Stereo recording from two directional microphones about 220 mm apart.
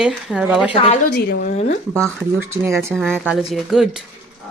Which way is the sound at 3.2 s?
Centre (ahead or behind).